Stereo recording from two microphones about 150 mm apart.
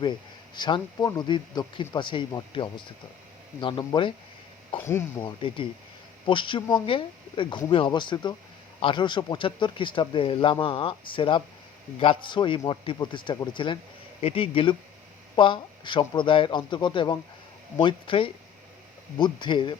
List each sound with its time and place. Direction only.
0.0 s speech: 30° left (ahead or behind)
4.9 s speech: 15° left (ahead or behind)
5.2 s speech: 35° left (ahead or behind)